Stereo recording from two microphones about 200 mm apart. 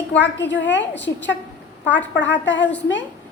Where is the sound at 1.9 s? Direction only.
65° left (ahead or behind).